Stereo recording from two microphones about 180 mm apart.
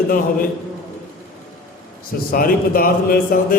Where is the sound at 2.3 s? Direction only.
50° left (ahead or behind).